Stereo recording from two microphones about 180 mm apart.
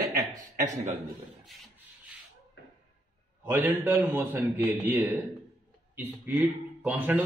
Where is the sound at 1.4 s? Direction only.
Centre (ahead or behind).